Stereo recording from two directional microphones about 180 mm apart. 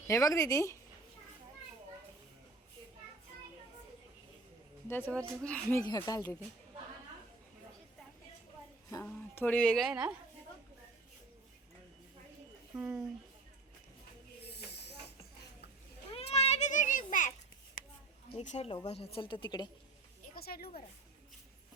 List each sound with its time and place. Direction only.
0.1 s speech: 15° left (ahead or behind)
4.9 s speech: 10° left (ahead or behind)
5.8 s a woman's voice: 25° left (ahead or behind)
8.9 s speech: 15° left (ahead or behind); by 10.2 s 5° right (ahead or behind)
12.7 s speech: 10° right (ahead or behind)
14.5 s snake: 70° left (ahead or behind)
16.1 s children playing: 35° left (ahead or behind)
18.3 s a woman's voice: 35° left (ahead or behind)
20.3 s a sound: 55° left (ahead or behind)